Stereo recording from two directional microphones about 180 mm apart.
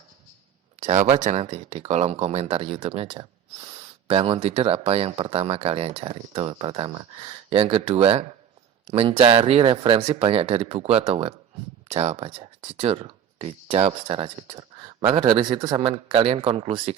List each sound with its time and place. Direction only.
0.8 s speech: 40° right (ahead or behind)